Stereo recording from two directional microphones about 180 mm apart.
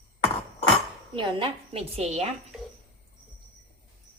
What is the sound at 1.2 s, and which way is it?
Speech, 30° right (ahead or behind).